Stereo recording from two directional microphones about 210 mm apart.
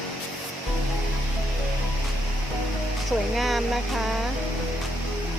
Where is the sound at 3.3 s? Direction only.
Centre (ahead or behind).